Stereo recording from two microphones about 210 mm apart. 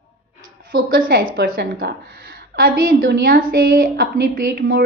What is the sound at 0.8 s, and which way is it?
A woman's voice, 40° right (ahead or behind).